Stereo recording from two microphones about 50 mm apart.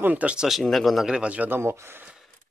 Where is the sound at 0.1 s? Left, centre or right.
Right.